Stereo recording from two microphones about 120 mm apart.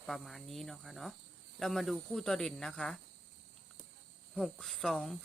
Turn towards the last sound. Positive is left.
turn(degrees=5)  # may be behind; listen again after turning